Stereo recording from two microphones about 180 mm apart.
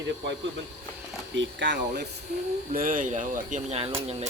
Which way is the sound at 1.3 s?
85° right.